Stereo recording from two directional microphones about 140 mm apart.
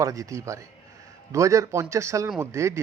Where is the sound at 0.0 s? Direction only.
25° right (ahead or behind).